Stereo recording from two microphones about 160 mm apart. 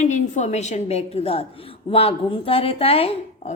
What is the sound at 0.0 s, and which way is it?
A woman's voice, 45° left (ahead or behind).